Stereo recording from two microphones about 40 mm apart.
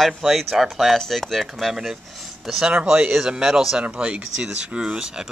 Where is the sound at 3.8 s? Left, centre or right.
Right.